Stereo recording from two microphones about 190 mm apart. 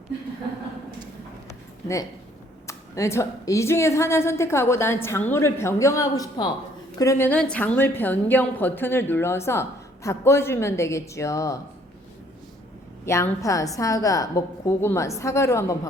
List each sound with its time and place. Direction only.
2.6 s a woman's voice: 15° left (ahead or behind)
13.1 s a woman's voice: 15° left (ahead or behind)